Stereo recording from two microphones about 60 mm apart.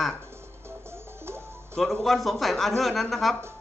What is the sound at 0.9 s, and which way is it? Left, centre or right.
Music, right.